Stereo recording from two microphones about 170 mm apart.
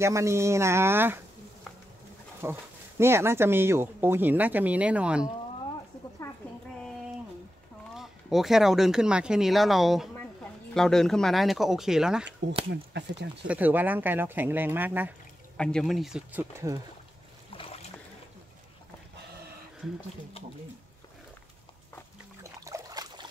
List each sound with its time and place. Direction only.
0.0 s speech: 15° right (ahead or behind)
2.4 s speech: 15° right (ahead or behind)
7.9 s speech: centre (ahead or behind)
12.9 s speech: 85° right
13.5 s speech: 10° right (ahead or behind)
15.5 s speech: 5° left (ahead or behind); by 16.8 s 15° right (ahead or behind)
17.5 s boat: 35° left (ahead or behind)
22.4 s trickle: 20° right (ahead or behind)